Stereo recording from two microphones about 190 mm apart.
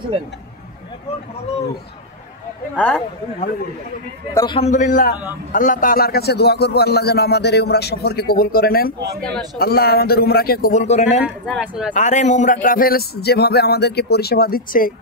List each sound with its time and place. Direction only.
2.7 s speech: 10° left (ahead or behind)
4.3 s speech: 15° left (ahead or behind)
4.6 s a man's voice: 40° left (ahead or behind)
11.2 s speech: 5° right (ahead or behind)
11.9 s speech: 40° left (ahead or behind)